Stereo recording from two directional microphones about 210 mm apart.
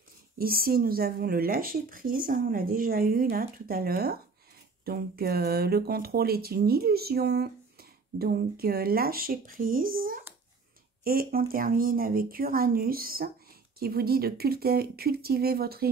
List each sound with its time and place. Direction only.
0.4 s speech: 45° right (ahead or behind)